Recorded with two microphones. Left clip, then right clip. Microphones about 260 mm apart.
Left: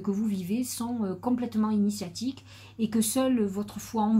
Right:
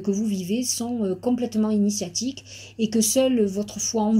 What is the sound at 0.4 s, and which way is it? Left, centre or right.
Speech, left.